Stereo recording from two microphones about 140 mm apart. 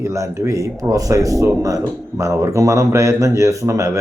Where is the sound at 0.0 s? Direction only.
20° right (ahead or behind).